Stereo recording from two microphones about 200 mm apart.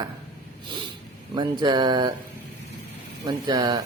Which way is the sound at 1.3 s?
20° right (ahead or behind).